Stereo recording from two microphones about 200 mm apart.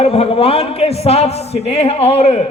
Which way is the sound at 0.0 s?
30° left (ahead or behind).